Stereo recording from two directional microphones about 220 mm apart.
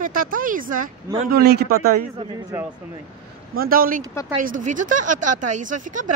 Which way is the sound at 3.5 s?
40° right (ahead or behind).